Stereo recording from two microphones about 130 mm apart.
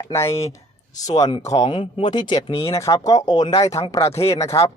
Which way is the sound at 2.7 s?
25° left (ahead or behind).